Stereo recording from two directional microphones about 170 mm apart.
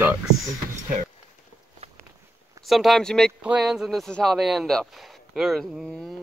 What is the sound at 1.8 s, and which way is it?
Walk, 35° right (ahead or behind).